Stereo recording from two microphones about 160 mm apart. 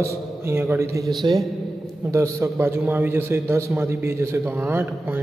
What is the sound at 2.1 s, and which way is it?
A man's voice, 15° right (ahead or behind).